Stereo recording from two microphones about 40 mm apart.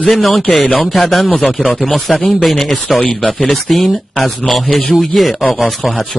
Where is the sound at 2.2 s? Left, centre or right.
Left.